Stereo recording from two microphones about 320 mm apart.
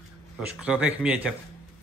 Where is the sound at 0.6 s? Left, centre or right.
Centre.